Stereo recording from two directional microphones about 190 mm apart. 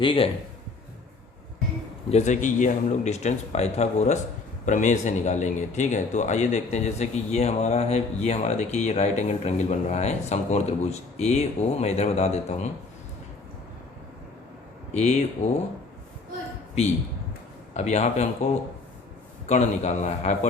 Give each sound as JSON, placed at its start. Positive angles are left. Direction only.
{"t": 0.0, "sound": "a man's voice", "side_deg": 25}
{"t": 2.0, "sound": "a man's voice", "side_deg": 35}
{"t": 14.9, "sound": "a man's voice", "side_deg": 35}
{"t": 17.7, "sound": "a man's voice", "side_deg": 35}
{"t": 19.5, "sound": "a man's voice", "side_deg": 35}